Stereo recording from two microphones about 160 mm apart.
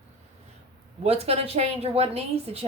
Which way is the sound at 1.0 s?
40° right (ahead or behind).